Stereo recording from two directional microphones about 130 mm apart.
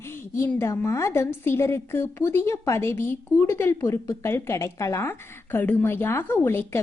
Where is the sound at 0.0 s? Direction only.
20° left (ahead or behind).